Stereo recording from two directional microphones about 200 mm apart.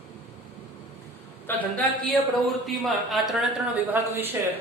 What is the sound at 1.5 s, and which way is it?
Speech, 10° left (ahead or behind).